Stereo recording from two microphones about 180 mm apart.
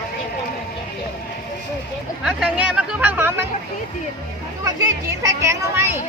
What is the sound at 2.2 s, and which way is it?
Speech, 5° right (ahead or behind).